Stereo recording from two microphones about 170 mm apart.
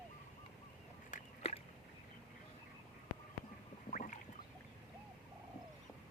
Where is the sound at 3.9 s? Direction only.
50° left (ahead or behind).